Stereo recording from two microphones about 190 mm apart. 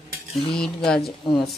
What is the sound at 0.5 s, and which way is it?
Speech, 5° left (ahead or behind).